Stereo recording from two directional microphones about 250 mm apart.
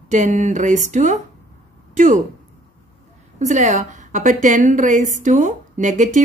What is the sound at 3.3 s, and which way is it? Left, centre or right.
A woman's voice, right.